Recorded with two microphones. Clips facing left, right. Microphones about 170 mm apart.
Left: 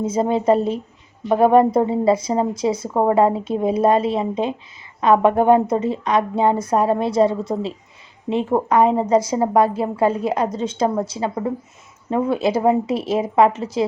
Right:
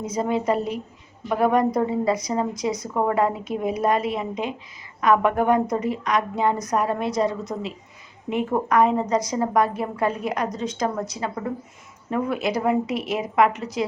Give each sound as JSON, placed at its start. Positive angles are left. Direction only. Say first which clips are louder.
{"t": 0.0, "sound": "speech", "louder": "left 5 dB", "side_deg": 25}